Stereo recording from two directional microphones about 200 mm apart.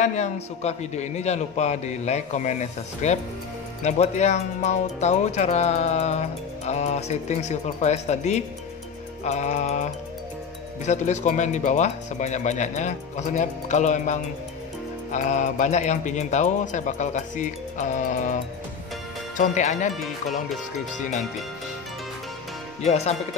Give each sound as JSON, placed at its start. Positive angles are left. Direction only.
{"t": 0.0, "sound": "speech", "side_deg": 35}
{"t": 10.9, "sound": "speech", "side_deg": 35}
{"t": 15.1, "sound": "speech", "side_deg": 40}
{"t": 20.0, "sound": "music", "side_deg": 0}
{"t": 22.8, "sound": "speech", "side_deg": 35}